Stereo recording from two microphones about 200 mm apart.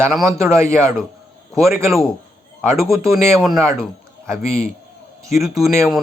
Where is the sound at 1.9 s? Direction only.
Centre (ahead or behind).